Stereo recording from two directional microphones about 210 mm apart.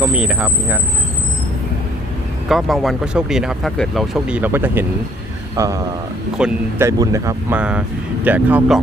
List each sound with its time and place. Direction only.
0.0 s speech: 5° right (ahead or behind)
2.5 s speech: centre (ahead or behind)